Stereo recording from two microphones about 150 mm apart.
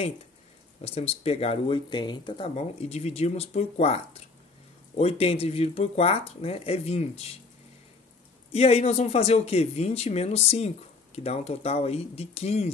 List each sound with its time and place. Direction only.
0.8 s speech: 45° left (ahead or behind)
2.5 s speech: 45° left (ahead or behind)
8.5 s speech: 45° left (ahead or behind)